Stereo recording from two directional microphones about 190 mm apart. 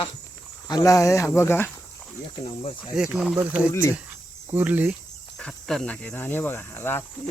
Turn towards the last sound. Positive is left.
turn(degrees=10)  # may be behind; listen again after turning